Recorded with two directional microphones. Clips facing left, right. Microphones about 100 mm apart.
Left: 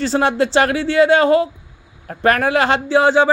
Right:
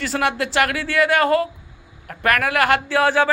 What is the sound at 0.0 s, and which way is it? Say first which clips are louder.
Speech: left 5 dB; 30° left (ahead or behind).